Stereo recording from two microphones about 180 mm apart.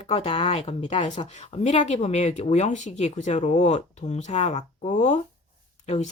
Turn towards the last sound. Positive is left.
turn(degrees=35)  # may be behind; listen again after turning